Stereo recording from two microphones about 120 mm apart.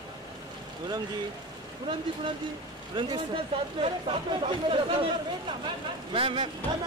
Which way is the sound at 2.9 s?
40° right (ahead or behind).